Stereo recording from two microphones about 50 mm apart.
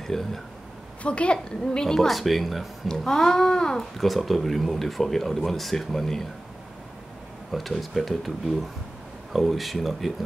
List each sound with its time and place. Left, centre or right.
0.0 s speech: centre
1.0 s a woman's voice: left
2.0 s speech: centre
2.9 s a child's voice: centre
4.0 s speech: centre
7.5 s speech: centre